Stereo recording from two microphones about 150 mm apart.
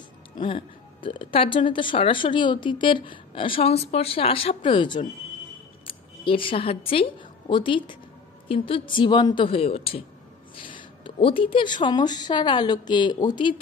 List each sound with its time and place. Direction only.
0.4 s a woman's voice: 35° left (ahead or behind)